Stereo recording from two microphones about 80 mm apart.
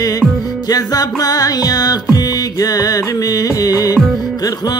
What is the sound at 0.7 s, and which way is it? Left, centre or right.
Music, left.